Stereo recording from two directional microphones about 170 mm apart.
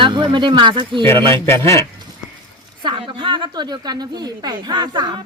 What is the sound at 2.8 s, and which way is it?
Speech, 30° right (ahead or behind).